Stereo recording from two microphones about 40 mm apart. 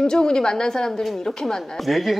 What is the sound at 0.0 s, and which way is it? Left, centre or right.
A woman's voice, left.